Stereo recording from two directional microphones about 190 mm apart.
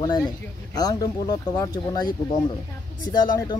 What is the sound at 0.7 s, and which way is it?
Speech, 20° left (ahead or behind).